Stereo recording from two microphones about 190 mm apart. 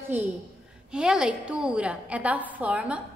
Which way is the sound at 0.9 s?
5° right (ahead or behind).